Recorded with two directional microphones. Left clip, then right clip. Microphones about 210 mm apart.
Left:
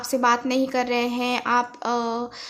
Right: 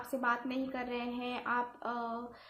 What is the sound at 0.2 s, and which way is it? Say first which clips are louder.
A woman's voice: left 14 dB; 40° left (ahead or behind).